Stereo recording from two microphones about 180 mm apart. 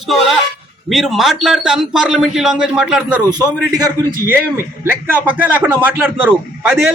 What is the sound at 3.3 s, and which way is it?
Speech, 20° right (ahead or behind).